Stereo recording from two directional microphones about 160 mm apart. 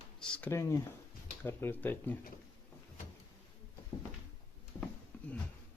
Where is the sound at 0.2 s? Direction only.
15° left (ahead or behind).